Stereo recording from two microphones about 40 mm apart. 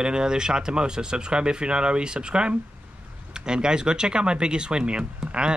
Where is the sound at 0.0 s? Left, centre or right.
Right.